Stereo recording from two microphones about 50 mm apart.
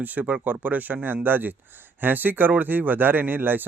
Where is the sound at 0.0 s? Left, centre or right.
Right.